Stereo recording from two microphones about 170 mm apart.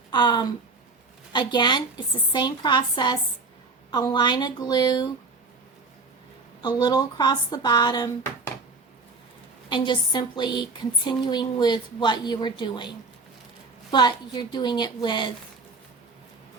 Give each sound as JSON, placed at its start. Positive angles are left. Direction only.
{"t": 0.1, "sound": "a woman's voice", "side_deg": 25}
{"t": 6.6, "sound": "a woman's voice", "side_deg": 25}
{"t": 9.6, "sound": "a woman's voice", "side_deg": 25}